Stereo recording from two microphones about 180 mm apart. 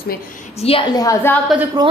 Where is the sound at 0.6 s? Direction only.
30° left (ahead or behind).